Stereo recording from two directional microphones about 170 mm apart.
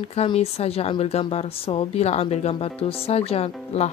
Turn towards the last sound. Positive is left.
turn(degrees=35)  # may be behind; listen again after turning